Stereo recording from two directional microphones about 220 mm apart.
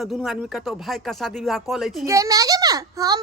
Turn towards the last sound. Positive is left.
turn(degrees=-15)  # may be behind; listen again after turning